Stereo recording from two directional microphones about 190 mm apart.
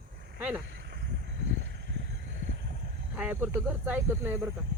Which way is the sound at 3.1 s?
10° right (ahead or behind).